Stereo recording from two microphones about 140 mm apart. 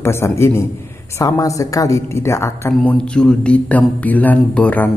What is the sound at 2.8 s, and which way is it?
Speech, 5° left (ahead or behind).